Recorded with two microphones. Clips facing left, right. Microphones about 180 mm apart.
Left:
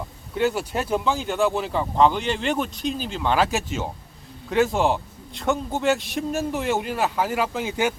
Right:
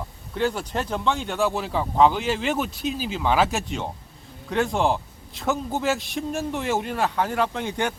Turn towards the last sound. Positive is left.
turn(degrees=5)  # may be behind; listen again after turning